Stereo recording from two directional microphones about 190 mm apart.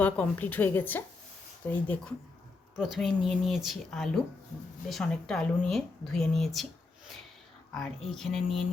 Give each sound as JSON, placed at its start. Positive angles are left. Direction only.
{"t": 0.0, "sound": "a woman's voice", "side_deg": 10}
{"t": 7.7, "sound": "speech", "side_deg": 0}